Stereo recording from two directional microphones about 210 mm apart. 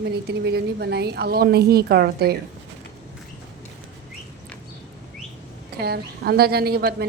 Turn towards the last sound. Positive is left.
turn(degrees=-45)  # may be behind; listen again after turning